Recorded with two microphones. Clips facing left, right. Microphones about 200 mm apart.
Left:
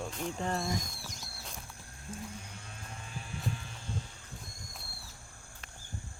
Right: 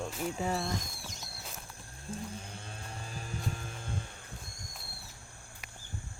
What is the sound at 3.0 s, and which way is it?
Music, 40° right (ahead or behind).